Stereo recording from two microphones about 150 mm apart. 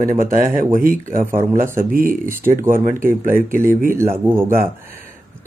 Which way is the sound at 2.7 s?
65° right (ahead or behind).